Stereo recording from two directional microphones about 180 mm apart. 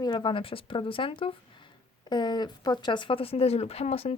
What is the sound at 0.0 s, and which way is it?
Speech, 25° left (ahead or behind).